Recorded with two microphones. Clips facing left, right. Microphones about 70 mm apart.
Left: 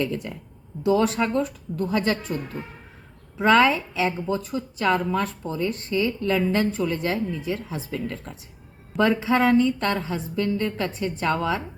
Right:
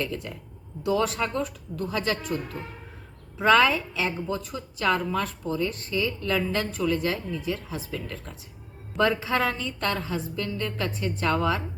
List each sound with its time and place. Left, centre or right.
0.0 s a woman's voice: left
9.0 s a woman's voice: left